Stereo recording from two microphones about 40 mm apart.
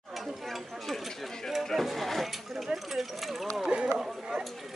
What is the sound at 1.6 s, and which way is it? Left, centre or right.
Speech, centre.